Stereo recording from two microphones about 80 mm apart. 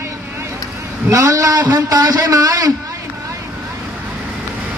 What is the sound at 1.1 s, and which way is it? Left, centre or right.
A man's voice, right.